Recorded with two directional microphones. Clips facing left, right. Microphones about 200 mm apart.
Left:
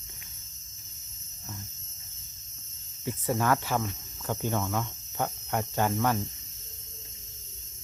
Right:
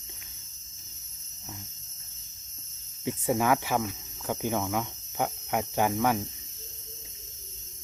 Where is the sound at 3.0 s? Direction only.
15° right (ahead or behind).